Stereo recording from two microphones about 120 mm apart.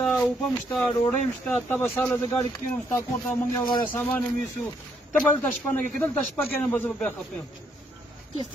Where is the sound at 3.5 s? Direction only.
40° left (ahead or behind).